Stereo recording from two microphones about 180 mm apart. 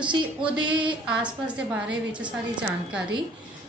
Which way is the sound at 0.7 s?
25° right (ahead or behind).